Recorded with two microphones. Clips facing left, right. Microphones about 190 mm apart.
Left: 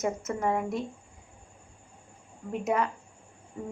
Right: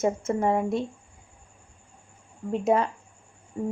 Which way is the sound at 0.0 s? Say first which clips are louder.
Right 5 dB; 30° right (ahead or behind).